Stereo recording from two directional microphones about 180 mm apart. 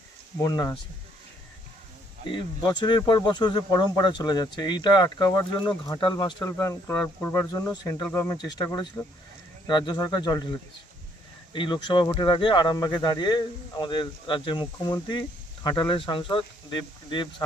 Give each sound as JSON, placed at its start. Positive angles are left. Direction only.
{"t": 0.3, "sound": "speech", "side_deg": 20}
{"t": 2.6, "sound": "speech", "side_deg": 25}